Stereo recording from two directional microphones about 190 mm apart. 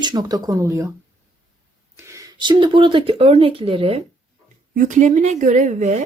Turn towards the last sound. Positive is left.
turn(degrees=-40)  # may be behind; listen again after turning